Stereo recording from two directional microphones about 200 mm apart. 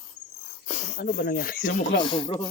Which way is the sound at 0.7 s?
35° left (ahead or behind).